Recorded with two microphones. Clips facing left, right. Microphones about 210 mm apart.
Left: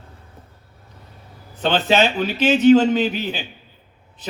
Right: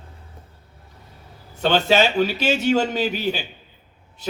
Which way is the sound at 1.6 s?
45° right (ahead or behind).